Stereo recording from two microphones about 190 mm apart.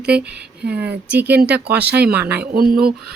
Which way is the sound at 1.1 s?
10° right (ahead or behind).